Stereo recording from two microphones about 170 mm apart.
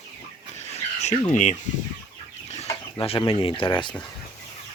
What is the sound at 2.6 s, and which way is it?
Speech, 30° left (ahead or behind).